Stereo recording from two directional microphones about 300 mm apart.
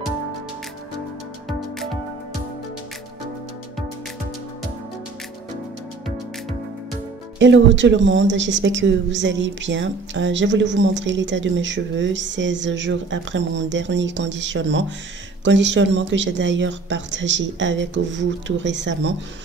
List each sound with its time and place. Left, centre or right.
7.3 s a woman's voice: right